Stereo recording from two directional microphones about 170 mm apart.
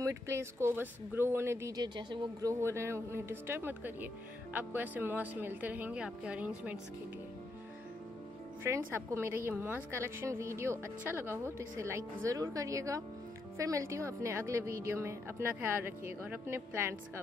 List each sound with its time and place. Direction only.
0.0 s a woman's voice: 15° right (ahead or behind)
1.8 s a woman's voice: 25° right (ahead or behind); by 6.8 s 10° right (ahead or behind)
8.6 s a woman's voice: 15° right (ahead or behind)